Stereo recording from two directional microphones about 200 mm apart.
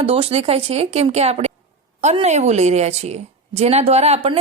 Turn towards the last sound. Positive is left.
turn(degrees=-30)  # may be behind; listen again after turning